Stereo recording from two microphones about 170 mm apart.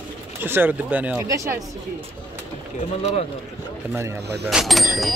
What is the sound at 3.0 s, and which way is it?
Speech, 35° left (ahead or behind).